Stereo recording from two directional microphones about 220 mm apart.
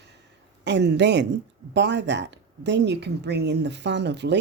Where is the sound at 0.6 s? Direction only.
50° right (ahead or behind).